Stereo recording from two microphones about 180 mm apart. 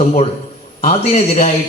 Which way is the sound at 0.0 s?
40° left (ahead or behind).